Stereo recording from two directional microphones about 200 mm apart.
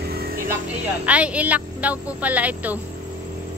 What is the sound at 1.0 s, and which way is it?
Speech, 5° right (ahead or behind).